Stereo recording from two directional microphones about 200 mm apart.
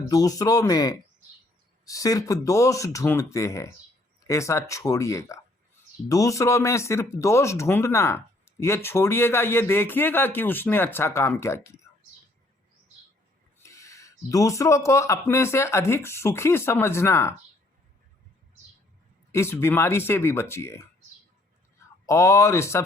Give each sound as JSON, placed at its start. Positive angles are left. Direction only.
{"t": 0.1, "sound": "speech", "side_deg": 20}
{"t": 13.6, "sound": "speech", "side_deg": 15}
{"t": 19.3, "sound": "speech", "side_deg": 15}
{"t": 22.0, "sound": "speech", "side_deg": 15}